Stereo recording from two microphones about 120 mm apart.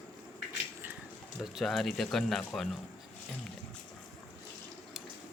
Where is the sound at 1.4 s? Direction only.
Centre (ahead or behind).